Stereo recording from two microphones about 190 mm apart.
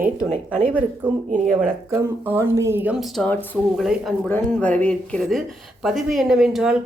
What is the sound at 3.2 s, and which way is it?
Speech, 10° left (ahead or behind).